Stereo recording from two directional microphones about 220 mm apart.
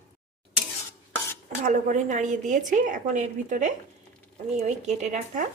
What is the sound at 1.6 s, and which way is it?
A woman's voice, 35° right (ahead or behind).